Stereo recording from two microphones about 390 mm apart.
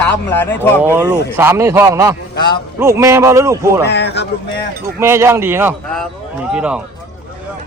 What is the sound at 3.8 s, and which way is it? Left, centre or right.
Speech, left.